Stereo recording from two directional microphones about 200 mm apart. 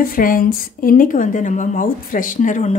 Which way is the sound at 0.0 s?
45° left (ahead or behind).